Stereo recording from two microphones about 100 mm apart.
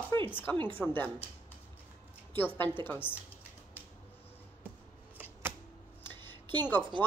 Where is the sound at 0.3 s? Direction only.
20° left (ahead or behind).